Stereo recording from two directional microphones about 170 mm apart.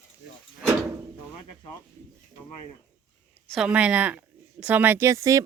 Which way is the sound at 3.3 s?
5° left (ahead or behind).